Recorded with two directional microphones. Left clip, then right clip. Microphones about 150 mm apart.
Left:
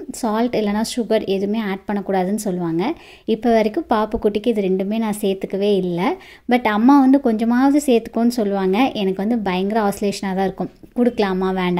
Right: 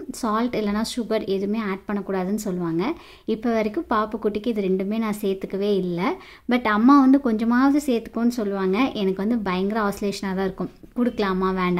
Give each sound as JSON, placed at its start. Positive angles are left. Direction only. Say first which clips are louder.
{"t": 0.2, "sound": "a woman's voice", "louder": "left 4 dB", "side_deg": 15}